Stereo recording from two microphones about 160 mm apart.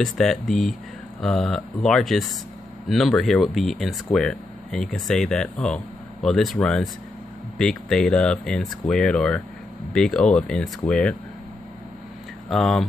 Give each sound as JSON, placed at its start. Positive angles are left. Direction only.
{"t": 0.0, "sound": "speech", "side_deg": 0}
{"t": 12.4, "sound": "speech", "side_deg": 5}